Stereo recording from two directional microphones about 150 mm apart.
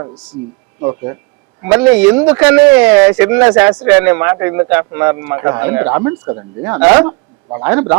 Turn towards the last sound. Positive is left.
turn(degrees=-15)  # may be behind; listen again after turning